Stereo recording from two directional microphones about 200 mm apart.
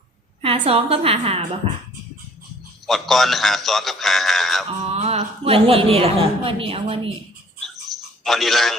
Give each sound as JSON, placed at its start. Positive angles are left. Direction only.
{"t": 0.4, "sound": "a woman's voice", "side_deg": -30}
{"t": 2.8, "sound": "a man's voice", "side_deg": 0}
{"t": 4.8, "sound": "a woman's voice", "side_deg": -30}
{"t": 8.2, "sound": "a man's voice", "side_deg": 0}